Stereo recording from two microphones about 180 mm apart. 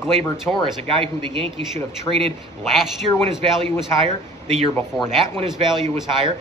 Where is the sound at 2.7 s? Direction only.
Centre (ahead or behind).